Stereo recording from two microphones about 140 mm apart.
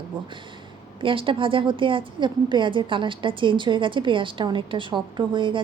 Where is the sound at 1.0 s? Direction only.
40° right (ahead or behind).